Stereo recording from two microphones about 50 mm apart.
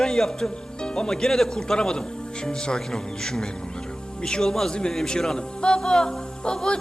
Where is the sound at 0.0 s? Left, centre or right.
Centre.